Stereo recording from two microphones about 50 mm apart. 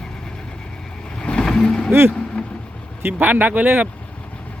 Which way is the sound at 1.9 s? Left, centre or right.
Right.